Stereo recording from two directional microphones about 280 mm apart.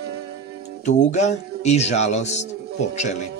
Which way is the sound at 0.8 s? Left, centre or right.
Left.